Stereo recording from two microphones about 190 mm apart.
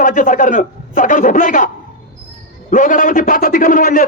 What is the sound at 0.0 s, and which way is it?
A man's voice, 45° left (ahead or behind).